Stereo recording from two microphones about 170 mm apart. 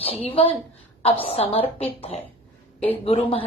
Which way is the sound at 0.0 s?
35° left (ahead or behind).